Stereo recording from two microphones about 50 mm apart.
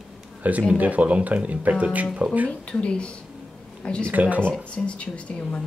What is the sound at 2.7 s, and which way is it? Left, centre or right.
Speech, centre.